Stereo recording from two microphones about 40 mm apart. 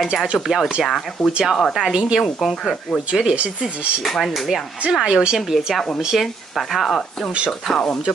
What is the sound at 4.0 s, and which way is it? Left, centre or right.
Speech, centre.